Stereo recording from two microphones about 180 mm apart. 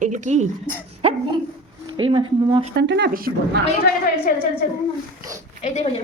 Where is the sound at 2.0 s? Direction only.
30° right (ahead or behind).